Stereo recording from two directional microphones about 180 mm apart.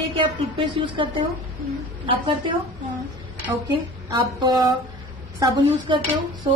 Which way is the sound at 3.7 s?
25° right (ahead or behind).